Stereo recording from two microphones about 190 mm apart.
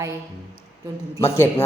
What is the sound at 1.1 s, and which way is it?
Speech, 15° left (ahead or behind).